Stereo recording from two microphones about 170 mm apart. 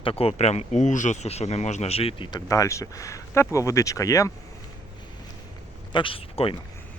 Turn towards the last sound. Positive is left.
turn(degrees=35)  # may be behind; listen again after turning